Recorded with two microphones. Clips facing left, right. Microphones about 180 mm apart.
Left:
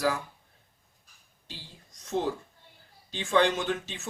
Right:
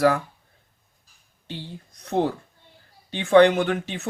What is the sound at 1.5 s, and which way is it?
Speech, 60° right (ahead or behind).